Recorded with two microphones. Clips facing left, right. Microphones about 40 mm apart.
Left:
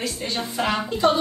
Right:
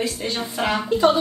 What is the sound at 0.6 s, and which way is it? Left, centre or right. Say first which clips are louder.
Speech: right 1 dB; centre.